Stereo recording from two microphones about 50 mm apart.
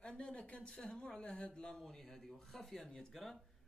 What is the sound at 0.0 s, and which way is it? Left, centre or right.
A woman's voice, centre.